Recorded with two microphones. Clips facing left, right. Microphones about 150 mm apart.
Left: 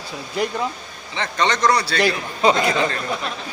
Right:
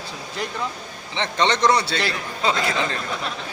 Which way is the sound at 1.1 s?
25° right (ahead or behind).